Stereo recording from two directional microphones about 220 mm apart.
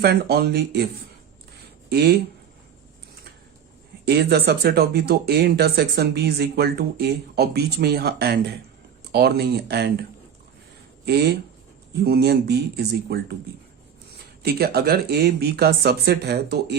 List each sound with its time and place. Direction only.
0.0 s speech: 45° right (ahead or behind)
1.9 s speech: 45° right (ahead or behind)
4.0 s speech: 50° right (ahead or behind)
12.0 s speech: 45° right (ahead or behind)
14.4 s speech: 45° right (ahead or behind)